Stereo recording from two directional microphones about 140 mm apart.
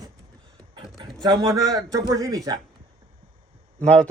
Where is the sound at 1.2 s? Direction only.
30° right (ahead or behind).